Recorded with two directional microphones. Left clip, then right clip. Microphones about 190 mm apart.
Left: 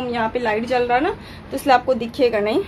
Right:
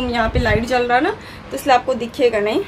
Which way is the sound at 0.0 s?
5° left (ahead or behind).